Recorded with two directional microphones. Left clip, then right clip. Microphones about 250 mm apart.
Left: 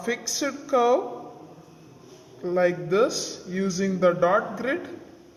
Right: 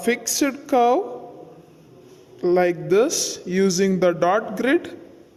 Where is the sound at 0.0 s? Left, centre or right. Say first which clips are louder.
Right 6 dB; right.